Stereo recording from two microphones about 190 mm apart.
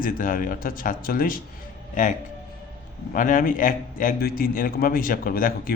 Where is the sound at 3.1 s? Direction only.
45° left (ahead or behind).